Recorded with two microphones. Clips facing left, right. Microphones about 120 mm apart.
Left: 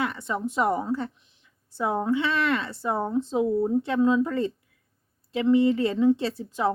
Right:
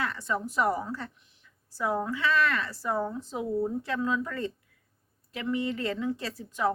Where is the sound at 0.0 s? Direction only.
20° left (ahead or behind).